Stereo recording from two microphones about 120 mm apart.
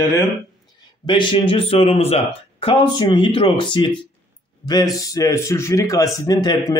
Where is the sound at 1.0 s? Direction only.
40° left (ahead or behind).